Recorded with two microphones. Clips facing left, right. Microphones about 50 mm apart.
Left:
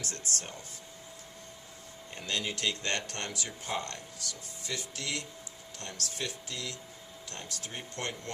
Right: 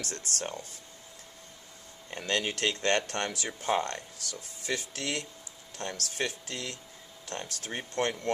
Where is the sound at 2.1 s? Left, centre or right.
Right.